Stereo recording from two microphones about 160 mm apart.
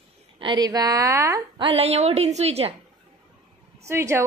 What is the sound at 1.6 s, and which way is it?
A woman's voice, 35° right (ahead or behind).